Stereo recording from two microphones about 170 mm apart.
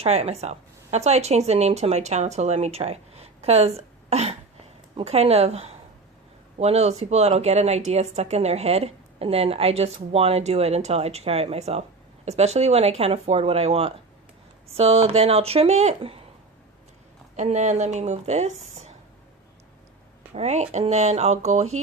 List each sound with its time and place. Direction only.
0.0 s speech: 40° right (ahead or behind)
17.3 s speech: 45° right (ahead or behind)
20.3 s speech: 40° right (ahead or behind)